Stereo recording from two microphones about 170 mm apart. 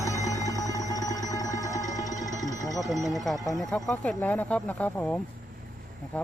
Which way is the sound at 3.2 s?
Centre (ahead or behind).